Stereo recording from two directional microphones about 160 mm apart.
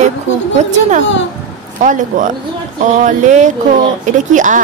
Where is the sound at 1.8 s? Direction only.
50° right (ahead or behind).